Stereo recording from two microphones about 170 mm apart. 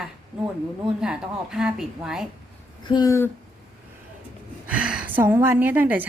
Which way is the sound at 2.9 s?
20° left (ahead or behind).